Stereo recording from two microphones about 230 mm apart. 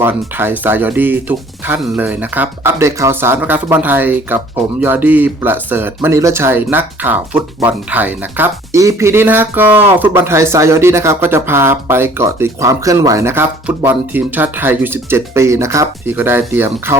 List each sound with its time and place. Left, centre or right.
0.0 s speech: centre